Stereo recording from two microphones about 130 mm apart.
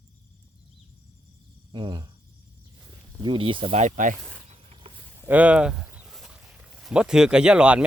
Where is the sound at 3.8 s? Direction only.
80° right.